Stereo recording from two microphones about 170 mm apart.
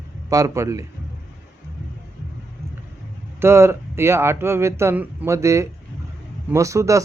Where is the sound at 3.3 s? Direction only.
15° right (ahead or behind).